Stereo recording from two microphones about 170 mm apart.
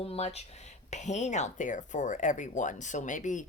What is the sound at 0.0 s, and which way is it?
Speech, 40° left (ahead or behind).